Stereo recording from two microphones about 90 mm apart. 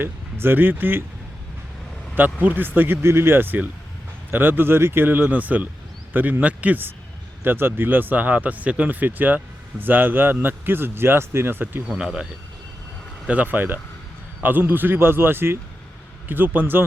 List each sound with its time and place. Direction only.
0.0 s speech: 25° right (ahead or behind)
2.1 s speech: 20° right (ahead or behind)
11.9 s speech: 10° right (ahead or behind)